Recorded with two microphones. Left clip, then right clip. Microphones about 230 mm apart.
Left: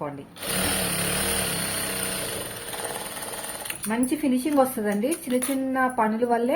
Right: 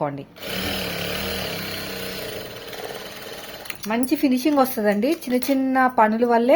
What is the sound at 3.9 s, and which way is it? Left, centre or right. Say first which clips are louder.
A woman's voice: right 4 dB; right.